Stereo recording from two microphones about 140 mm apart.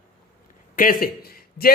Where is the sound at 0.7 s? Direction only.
90° left.